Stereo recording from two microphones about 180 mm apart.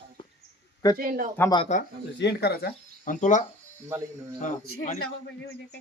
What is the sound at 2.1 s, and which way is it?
Speech, 65° left (ahead or behind).